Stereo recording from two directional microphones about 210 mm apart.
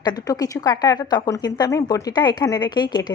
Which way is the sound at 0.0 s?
20° left (ahead or behind).